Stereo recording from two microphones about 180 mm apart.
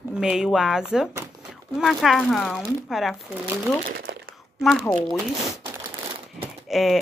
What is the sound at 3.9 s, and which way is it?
Speech, 60° right (ahead or behind).